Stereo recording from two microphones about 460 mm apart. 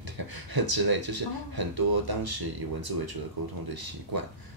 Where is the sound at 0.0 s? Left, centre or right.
Right.